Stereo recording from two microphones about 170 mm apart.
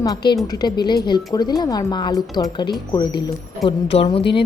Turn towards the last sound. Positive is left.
turn(degrees=30)  # may be behind; listen again after turning